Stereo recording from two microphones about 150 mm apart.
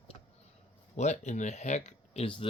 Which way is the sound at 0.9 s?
50° left (ahead or behind).